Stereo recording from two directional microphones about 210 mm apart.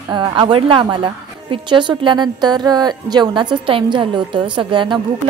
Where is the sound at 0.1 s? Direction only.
20° right (ahead or behind).